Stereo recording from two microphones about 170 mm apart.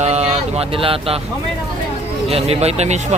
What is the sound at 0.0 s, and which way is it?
Speech, 40° right (ahead or behind).